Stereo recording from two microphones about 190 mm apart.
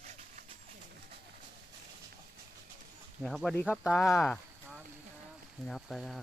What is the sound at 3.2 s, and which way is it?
Speech, centre (ahead or behind).